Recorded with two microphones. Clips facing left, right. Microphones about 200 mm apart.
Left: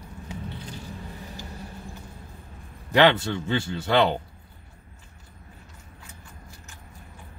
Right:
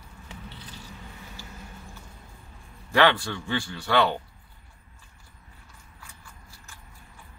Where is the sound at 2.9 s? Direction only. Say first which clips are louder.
Left 3 dB; 20° left (ahead or behind).